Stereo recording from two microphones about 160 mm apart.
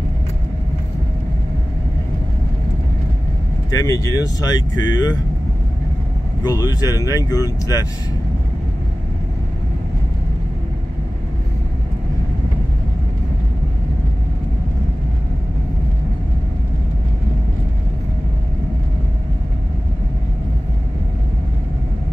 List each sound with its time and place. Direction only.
3.7 s speech: 20° left (ahead or behind)
6.4 s speech: 25° left (ahead or behind)